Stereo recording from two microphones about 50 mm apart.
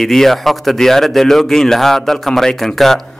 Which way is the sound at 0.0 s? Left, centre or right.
Centre.